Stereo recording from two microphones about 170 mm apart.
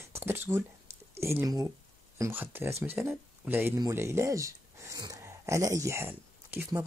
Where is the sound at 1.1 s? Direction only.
15° right (ahead or behind).